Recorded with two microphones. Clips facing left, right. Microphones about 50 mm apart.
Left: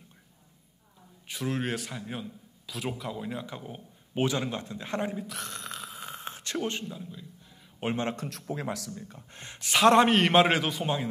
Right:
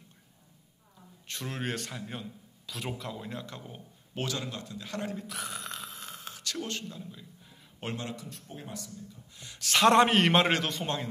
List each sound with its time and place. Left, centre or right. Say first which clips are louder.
1.2 s a man's voice: left 5 dB; centre; by 5.1 s left
5.2 s a sound: even; centre
6.1 s a sound: left 4 dB; left
6.9 s a man's voice: left 3 dB; centre
7.9 s a man's voice: left 7 dB; left
8.3 s speech: left 9 dB; left
9.0 s speech: left 3 dB; left
9.8 s a man's voice: left 1 dB; centre